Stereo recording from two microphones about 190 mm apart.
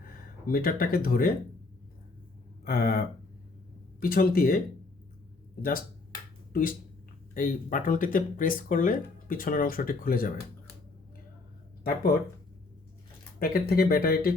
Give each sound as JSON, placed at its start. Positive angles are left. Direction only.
{"t": 0.4, "sound": "speech", "side_deg": 50}
{"t": 2.6, "sound": "speech", "side_deg": 50}
{"t": 4.0, "sound": "speech", "side_deg": 50}
{"t": 6.5, "sound": "speech", "side_deg": 50}
{"t": 13.4, "sound": "speech", "side_deg": 50}